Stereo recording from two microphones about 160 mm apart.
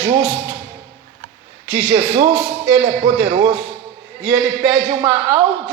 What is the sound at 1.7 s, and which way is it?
Speech, 40° right (ahead or behind).